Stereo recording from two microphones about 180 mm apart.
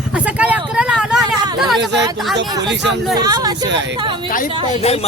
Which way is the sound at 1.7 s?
75° right (ahead or behind).